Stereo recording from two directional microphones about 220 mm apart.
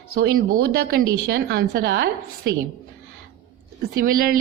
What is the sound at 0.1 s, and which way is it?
Speech, 45° right (ahead or behind).